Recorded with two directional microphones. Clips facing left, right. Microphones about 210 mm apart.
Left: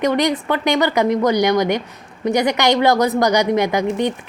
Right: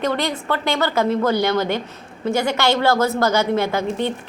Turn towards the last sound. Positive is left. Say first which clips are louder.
# left 3 dB
turn(degrees=15)  # may be behind; listen again after turning